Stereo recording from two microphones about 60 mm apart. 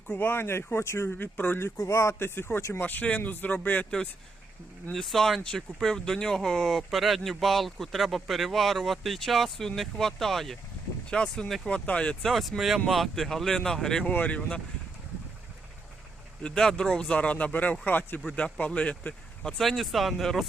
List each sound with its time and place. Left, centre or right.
0.1 s speech: left
1.7 s speech: left
2.8 s speech: left
5.0 s speech: centre
11.7 s speech: centre
12.2 s speech: centre
14.1 s speech: left
16.4 s speech: centre; by 18.2 s left
18.3 s speech: centre
19.4 s speech: centre